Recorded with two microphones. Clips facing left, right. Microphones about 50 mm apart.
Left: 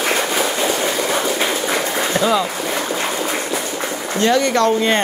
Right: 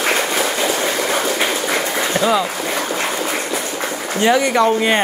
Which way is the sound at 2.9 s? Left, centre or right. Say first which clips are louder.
Even; centre.